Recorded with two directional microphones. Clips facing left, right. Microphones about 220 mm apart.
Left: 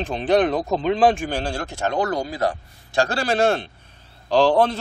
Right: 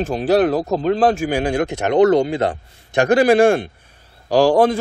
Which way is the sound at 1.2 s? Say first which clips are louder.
Right 8 dB; 15° right (ahead or behind).